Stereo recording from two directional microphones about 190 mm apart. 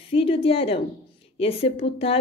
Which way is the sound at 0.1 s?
30° left (ahead or behind).